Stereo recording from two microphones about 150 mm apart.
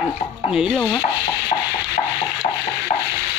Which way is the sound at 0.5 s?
5° right (ahead or behind).